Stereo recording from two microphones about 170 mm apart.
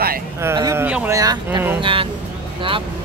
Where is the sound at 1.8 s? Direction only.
30° right (ahead or behind).